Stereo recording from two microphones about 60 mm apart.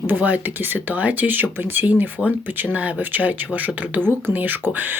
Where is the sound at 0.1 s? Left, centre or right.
Right.